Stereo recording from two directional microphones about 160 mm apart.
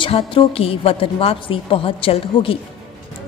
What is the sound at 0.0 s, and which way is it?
A woman's voice, 35° left (ahead or behind).